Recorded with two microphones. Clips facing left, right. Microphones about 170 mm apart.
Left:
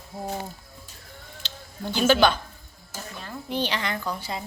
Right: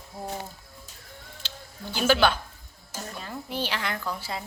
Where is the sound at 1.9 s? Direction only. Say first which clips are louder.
Left 3 dB; 5° right (ahead or behind).